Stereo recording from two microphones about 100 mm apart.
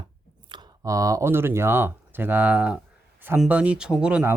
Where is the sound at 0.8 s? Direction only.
35° right (ahead or behind); by 4.2 s 10° right (ahead or behind).